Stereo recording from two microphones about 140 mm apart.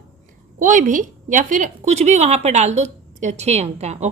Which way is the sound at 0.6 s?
65° right (ahead or behind).